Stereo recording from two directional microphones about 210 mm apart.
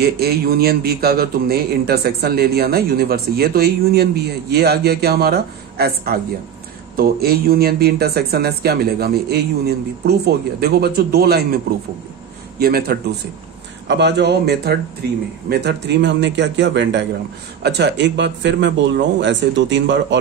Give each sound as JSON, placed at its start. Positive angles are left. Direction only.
{"t": 0.0, "sound": "a man's voice", "side_deg": -50}